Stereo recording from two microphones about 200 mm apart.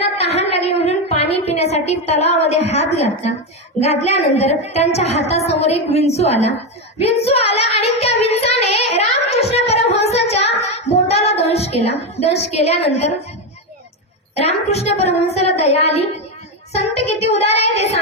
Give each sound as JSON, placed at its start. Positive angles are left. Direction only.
{"t": 0.0, "sound": "a sound", "side_deg": 30}
{"t": 3.8, "sound": "a woman's voice", "side_deg": 30}
{"t": 7.0, "sound": "child singing", "side_deg": 30}
{"t": 12.2, "sound": "a woman's voice", "side_deg": 30}
{"t": 14.3, "sound": "a woman's voice", "side_deg": 30}
{"t": 16.7, "sound": "a woman's voice", "side_deg": 30}